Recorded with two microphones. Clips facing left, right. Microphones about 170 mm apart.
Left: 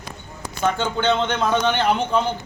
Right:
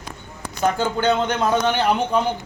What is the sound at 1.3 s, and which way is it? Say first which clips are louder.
Speech: right 1 dB; 5° right (ahead or behind).